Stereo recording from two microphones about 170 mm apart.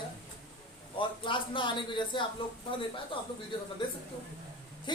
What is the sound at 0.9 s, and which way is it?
A man's voice, 30° left (ahead or behind).